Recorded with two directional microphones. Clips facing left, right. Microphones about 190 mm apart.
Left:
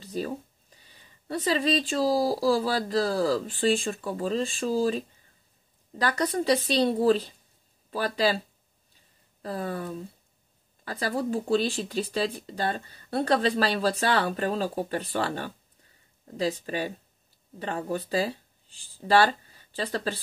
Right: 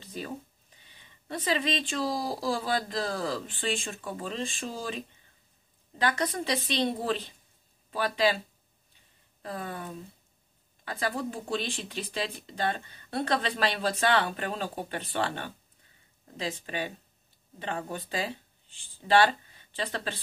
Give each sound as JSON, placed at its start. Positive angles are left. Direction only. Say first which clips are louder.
{"t": 0.0, "sound": "a sound", "louder": "left 7 dB", "side_deg": 35}
{"t": 0.8, "sound": "speech", "louder": "left 4 dB", "side_deg": 35}
{"t": 9.4, "sound": "speech", "louder": "left 5 dB", "side_deg": 35}
{"t": 10.9, "sound": "speech", "louder": "left 4 dB", "side_deg": 35}